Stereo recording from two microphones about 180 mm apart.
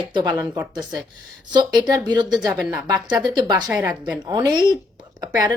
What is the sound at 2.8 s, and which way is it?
Speech, 25° right (ahead or behind).